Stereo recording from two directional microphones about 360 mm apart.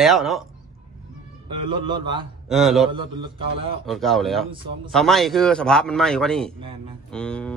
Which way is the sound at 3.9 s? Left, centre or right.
Centre.